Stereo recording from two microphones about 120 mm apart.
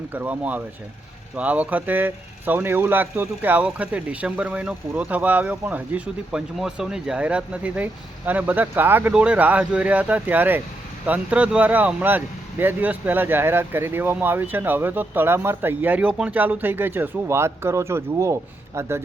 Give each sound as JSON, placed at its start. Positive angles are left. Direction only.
{"t": 0.1, "sound": "speech", "side_deg": -15}